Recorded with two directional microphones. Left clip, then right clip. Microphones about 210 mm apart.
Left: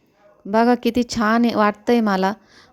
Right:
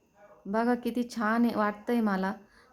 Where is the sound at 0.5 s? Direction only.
35° left (ahead or behind).